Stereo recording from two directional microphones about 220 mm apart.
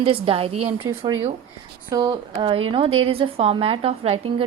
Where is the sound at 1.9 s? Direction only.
15° right (ahead or behind).